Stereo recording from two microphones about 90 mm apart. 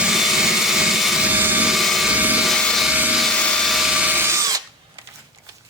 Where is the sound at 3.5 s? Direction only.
5° left (ahead or behind).